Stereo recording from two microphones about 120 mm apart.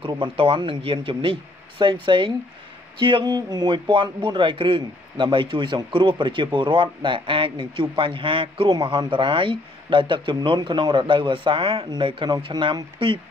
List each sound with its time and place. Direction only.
0.0 s a man's voice: 50° right (ahead or behind)
8.0 s a man's voice: 45° right (ahead or behind)
8.6 s a man's voice: 35° right (ahead or behind)